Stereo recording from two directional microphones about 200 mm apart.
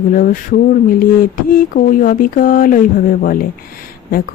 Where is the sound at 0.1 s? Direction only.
45° left (ahead or behind).